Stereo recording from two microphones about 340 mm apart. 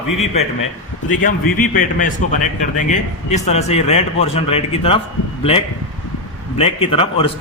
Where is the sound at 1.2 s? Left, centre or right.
Left.